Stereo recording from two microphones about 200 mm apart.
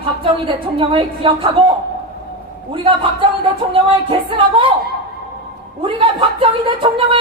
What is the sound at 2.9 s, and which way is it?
Speech, 25° right (ahead or behind).